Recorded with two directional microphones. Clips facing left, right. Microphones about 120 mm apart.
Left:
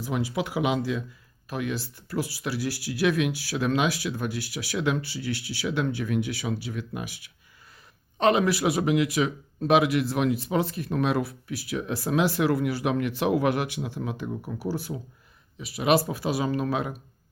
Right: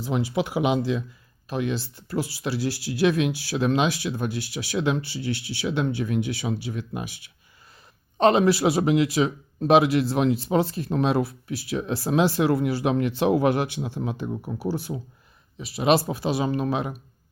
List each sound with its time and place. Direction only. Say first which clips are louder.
0.0 s speech: right 3 dB; 25° right (ahead or behind)